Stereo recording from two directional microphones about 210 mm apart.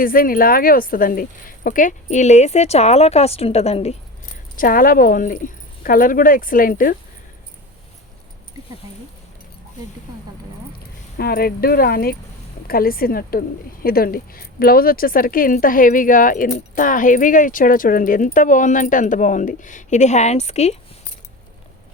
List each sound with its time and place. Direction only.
0.0 s speech: 40° left (ahead or behind)
4.5 s speech: 40° left (ahead or behind)
11.2 s speech: 45° left (ahead or behind); by 20.7 s 30° left (ahead or behind)